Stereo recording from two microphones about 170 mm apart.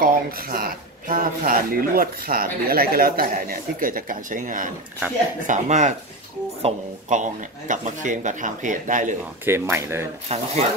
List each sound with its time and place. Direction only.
0.0 s speech: 60° right (ahead or behind)
9.4 s speech: 15° right (ahead or behind)
10.2 s speech: 40° right (ahead or behind)